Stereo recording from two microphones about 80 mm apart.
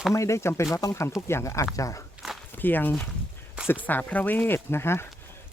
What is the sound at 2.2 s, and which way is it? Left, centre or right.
Walk, centre.